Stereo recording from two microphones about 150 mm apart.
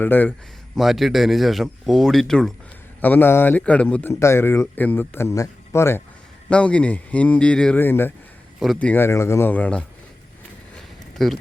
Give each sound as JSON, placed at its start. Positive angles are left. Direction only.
{"t": 0.0, "sound": "speech", "side_deg": 10}
{"t": 0.8, "sound": "speech", "side_deg": 0}
{"t": 10.8, "sound": "a sound", "side_deg": 0}